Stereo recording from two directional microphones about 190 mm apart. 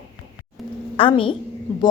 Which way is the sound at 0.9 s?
30° left (ahead or behind).